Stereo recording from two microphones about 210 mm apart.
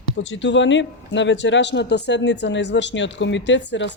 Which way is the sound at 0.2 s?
60° left (ahead or behind).